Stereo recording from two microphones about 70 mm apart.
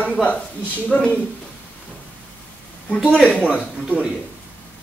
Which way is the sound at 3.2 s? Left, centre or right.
Centre.